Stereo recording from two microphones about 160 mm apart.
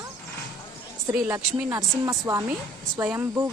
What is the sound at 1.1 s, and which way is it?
A woman's voice, 10° right (ahead or behind).